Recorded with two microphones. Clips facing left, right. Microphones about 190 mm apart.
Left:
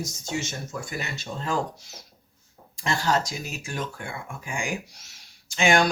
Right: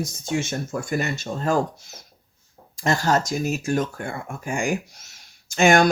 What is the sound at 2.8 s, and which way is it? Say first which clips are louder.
Speech: right 4 dB; 45° right (ahead or behind).